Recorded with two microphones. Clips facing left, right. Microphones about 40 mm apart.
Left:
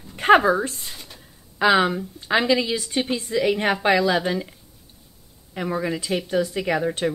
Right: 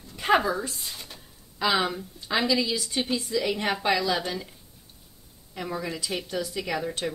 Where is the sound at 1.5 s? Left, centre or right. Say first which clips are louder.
Left 7 dB; left.